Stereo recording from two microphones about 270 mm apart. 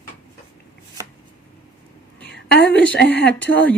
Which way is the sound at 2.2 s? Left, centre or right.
Left.